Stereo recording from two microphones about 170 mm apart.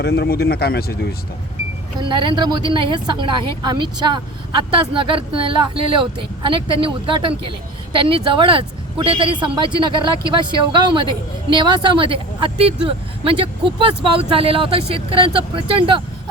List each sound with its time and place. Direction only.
0.0 s a man's voice: 70° left (ahead or behind)
2.0 s a woman's voice: 30° right (ahead or behind)